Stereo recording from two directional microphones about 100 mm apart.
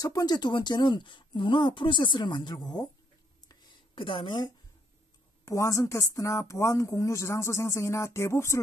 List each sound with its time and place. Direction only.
0.0 s speech: 40° left (ahead or behind)
3.9 s a woman's voice: 55° left (ahead or behind)
5.4 s speech: 35° left (ahead or behind)